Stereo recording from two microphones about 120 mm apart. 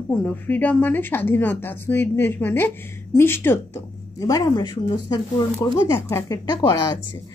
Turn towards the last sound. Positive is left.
turn(degrees=35)  # may be behind; listen again after turning